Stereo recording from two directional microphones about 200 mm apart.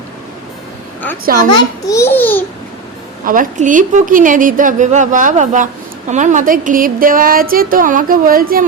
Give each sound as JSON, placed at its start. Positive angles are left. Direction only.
{"t": 1.5, "sound": "a child's voice", "side_deg": 15}
{"t": 3.2, "sound": "a woman's voice", "side_deg": -40}